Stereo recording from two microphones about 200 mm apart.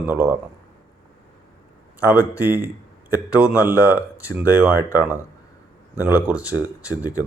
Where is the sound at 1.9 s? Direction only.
10° right (ahead or behind).